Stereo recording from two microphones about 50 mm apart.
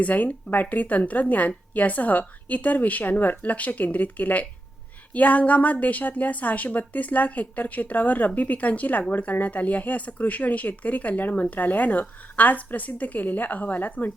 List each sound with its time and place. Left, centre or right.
0.0 s a woman's voice: left